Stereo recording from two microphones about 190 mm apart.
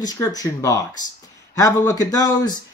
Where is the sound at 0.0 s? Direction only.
20° left (ahead or behind).